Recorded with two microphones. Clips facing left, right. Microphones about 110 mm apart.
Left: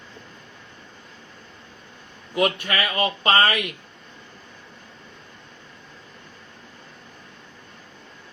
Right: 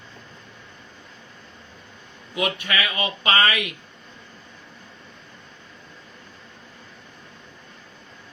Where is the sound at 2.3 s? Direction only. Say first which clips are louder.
Left 3 dB; 45° left (ahead or behind).